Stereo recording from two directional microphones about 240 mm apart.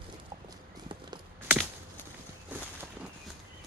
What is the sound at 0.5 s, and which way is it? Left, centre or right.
Walk, centre.